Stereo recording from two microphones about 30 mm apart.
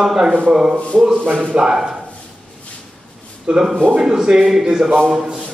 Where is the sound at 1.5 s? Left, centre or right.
Right.